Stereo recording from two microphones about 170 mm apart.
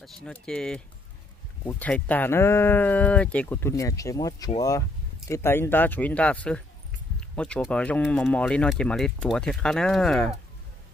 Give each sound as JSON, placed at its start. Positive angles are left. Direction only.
{"t": 0.0, "sound": "speech", "side_deg": 5}
{"t": 7.2, "sound": "a sound", "side_deg": 5}
{"t": 7.6, "sound": "speech", "side_deg": 5}